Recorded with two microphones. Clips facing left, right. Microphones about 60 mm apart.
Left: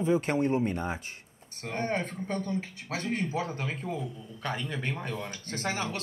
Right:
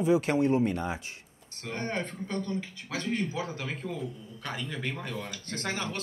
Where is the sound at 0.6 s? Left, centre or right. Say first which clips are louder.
Right 1 dB; left.